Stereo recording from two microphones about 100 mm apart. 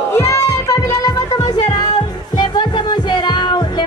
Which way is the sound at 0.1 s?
25° left (ahead or behind).